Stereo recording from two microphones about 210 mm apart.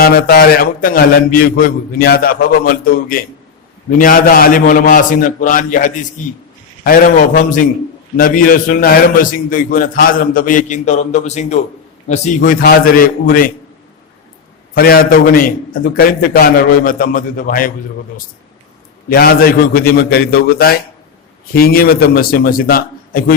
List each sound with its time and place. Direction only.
0.0 s a man's voice: 45° left (ahead or behind)
14.8 s speech: 45° left (ahead or behind)
19.0 s speech: 45° left (ahead or behind)